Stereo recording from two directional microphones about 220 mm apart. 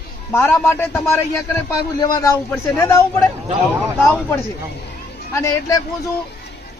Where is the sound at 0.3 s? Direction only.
10° left (ahead or behind).